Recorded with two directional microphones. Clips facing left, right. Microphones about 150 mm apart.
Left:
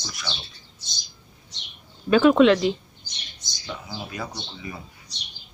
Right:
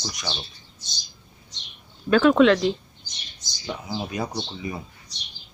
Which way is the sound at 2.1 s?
5° left (ahead or behind).